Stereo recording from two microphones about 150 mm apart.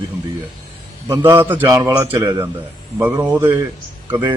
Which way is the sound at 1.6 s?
25° right (ahead or behind).